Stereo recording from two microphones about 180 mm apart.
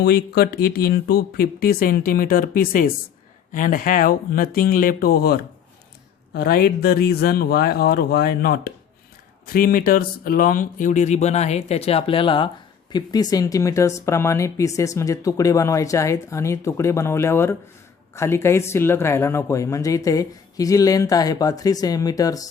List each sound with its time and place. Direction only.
0.0 s speech: 60° left (ahead or behind); by 22.4 s 20° left (ahead or behind)